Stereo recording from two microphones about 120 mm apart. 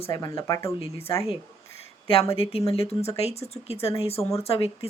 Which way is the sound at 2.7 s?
55° left (ahead or behind).